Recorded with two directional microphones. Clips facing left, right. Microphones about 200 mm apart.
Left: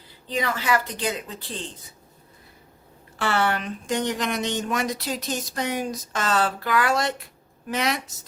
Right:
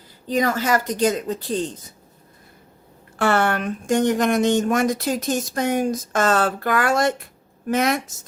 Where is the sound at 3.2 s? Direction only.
50° right (ahead or behind).